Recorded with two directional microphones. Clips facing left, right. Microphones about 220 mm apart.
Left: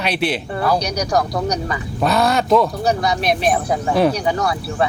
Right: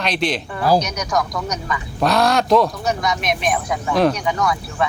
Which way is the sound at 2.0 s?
5° left (ahead or behind).